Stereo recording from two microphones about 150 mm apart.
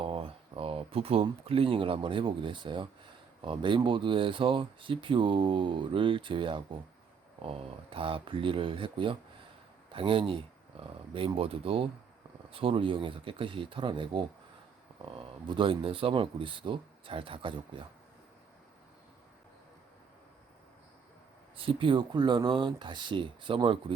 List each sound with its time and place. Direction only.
0.0 s speech: 40° right (ahead or behind)
15.4 s speech: 35° right (ahead or behind)
21.5 s speech: 35° right (ahead or behind)